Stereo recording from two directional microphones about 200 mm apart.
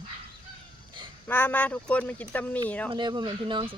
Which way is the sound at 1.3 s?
10° left (ahead or behind).